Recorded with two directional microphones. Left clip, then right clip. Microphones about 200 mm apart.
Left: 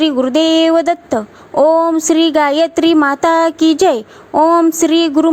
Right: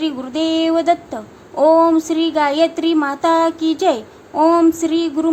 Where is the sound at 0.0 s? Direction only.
35° left (ahead or behind).